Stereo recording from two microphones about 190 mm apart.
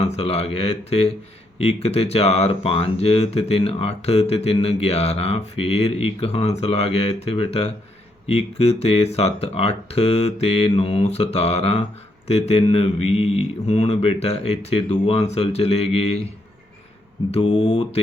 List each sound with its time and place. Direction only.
0.0 s speech: 30° left (ahead or behind)
17.3 s mantra: 30° left (ahead or behind)